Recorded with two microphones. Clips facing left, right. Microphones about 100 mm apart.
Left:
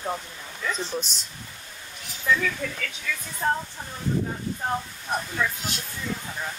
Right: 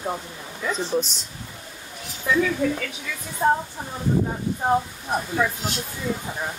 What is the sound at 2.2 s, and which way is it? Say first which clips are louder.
Speech: right 4 dB; 15° right (ahead or behind).